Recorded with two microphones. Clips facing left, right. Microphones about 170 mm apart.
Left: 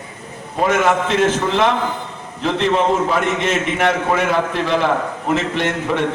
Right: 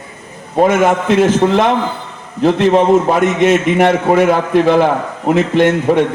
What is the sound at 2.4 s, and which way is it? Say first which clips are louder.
A man's voice: right 6 dB; 45° right (ahead or behind).